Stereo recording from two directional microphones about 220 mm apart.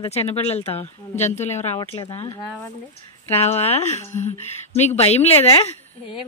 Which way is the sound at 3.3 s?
30° left (ahead or behind).